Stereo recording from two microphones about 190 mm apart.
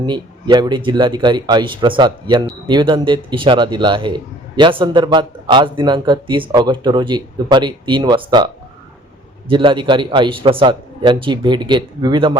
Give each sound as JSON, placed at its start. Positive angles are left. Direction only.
{"t": 0.0, "sound": "speech", "side_deg": -25}
{"t": 9.5, "sound": "speech", "side_deg": -25}